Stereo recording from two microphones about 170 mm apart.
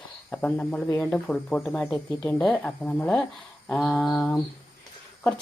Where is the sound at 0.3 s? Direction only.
10° left (ahead or behind).